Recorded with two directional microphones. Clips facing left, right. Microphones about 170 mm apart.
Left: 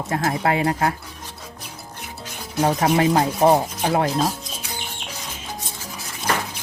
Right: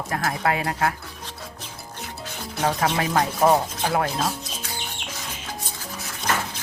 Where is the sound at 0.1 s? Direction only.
25° left (ahead or behind).